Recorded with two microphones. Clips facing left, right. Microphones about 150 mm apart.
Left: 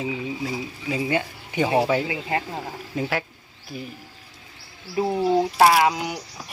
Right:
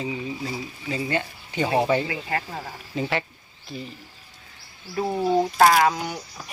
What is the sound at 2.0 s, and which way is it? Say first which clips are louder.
Speech: left 2 dB; 20° left (ahead or behind).